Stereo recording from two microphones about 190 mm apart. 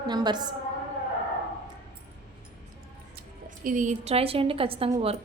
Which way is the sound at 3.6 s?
45° right (ahead or behind).